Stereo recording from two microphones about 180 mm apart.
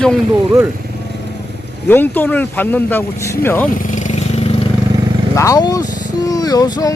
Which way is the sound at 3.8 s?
45° left (ahead or behind).